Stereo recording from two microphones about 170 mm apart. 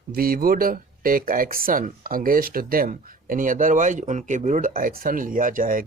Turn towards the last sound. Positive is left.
turn(degrees=-50)  # may be behind; listen again after turning